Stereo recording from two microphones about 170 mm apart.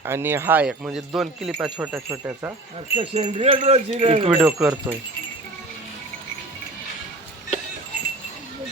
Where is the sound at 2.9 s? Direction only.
35° right (ahead or behind).